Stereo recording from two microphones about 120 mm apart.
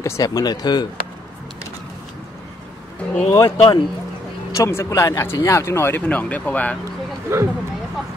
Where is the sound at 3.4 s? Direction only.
45° left (ahead or behind).